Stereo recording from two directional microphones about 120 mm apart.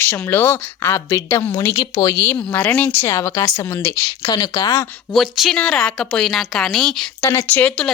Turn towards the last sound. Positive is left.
turn(degrees=10)  # may be behind; listen again after turning